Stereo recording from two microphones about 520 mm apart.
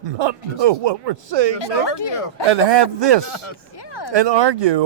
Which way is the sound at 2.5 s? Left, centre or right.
Right.